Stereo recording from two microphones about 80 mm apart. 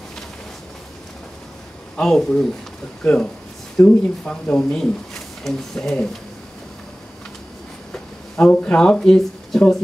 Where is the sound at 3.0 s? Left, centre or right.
Centre.